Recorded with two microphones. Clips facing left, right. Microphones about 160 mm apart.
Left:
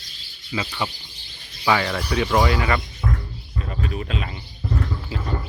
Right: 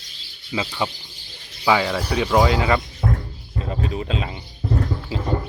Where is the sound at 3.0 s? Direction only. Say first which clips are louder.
Right 3 dB; 40° right (ahead or behind).